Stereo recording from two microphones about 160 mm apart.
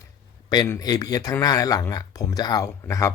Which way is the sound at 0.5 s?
25° left (ahead or behind).